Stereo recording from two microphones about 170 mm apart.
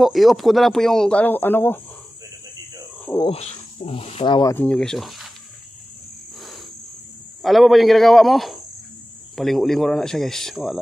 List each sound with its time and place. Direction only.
0.0 s speech: centre (ahead or behind)
3.3 s speech: 35° left (ahead or behind)
4.6 s speech: 5° left (ahead or behind)
7.4 s speech: centre (ahead or behind)